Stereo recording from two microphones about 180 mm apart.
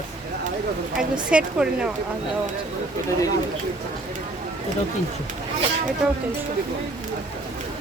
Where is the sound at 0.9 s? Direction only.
5° right (ahead or behind).